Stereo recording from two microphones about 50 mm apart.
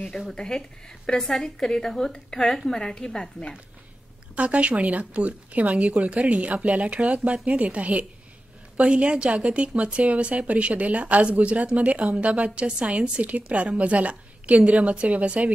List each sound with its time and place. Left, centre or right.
0.3 s a woman's voice: centre
4.4 s a woman's voice: right